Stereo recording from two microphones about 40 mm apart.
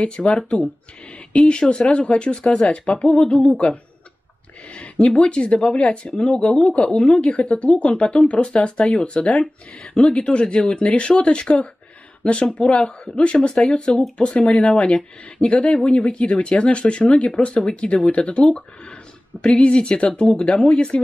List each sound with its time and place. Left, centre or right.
0.0 s speech: left
4.6 s a sound: left
5.1 s speech: left
10.4 s speech: centre
10.7 s speech: left